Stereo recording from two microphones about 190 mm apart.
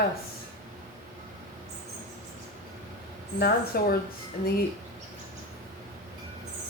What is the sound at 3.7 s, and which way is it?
Speech, 55° left (ahead or behind).